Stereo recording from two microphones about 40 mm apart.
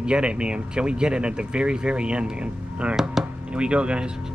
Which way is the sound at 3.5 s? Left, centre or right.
Right.